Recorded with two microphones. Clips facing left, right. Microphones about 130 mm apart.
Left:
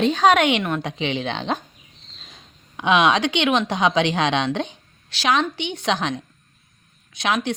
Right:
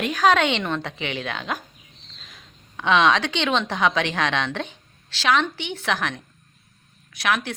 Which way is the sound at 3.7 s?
20° left (ahead or behind).